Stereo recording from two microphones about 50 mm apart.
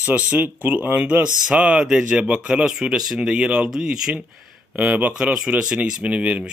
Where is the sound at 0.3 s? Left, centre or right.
Right.